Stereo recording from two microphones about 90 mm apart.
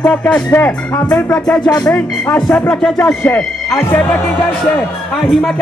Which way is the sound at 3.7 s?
30° left (ahead or behind).